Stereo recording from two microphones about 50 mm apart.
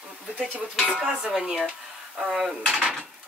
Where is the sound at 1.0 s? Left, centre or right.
Centre.